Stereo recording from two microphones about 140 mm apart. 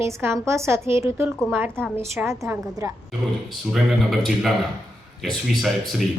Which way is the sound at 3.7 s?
Centre (ahead or behind).